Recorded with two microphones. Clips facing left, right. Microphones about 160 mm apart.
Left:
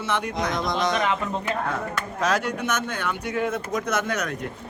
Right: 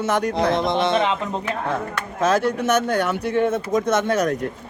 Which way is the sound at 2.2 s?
30° right (ahead or behind).